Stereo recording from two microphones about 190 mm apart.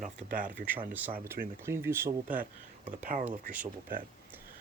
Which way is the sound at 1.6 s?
15° right (ahead or behind).